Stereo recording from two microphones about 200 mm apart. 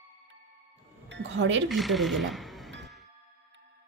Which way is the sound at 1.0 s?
65° right (ahead or behind).